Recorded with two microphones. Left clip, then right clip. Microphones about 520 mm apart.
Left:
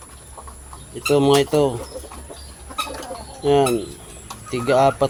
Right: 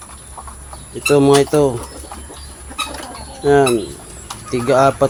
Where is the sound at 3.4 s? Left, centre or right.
Left.